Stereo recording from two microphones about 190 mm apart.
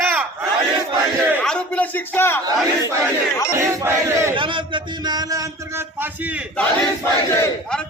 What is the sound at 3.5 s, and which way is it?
Speech, 15° right (ahead or behind).